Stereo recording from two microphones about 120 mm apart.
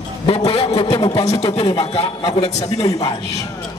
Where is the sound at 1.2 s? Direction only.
60° left (ahead or behind).